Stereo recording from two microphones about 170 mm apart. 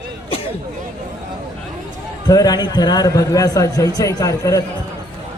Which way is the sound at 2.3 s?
25° left (ahead or behind).